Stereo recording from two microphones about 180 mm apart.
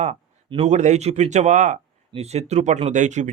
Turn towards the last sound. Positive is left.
turn(degrees=-40)  # may be behind; listen again after turning